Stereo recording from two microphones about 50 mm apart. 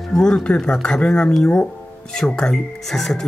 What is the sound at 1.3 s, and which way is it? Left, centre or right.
Speech, centre.